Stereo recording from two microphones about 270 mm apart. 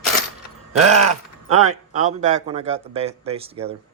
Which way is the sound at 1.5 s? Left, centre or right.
Right.